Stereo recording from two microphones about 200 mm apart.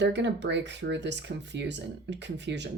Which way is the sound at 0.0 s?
60° right (ahead or behind).